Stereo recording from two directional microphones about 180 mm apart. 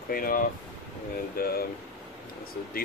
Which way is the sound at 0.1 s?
50° left (ahead or behind).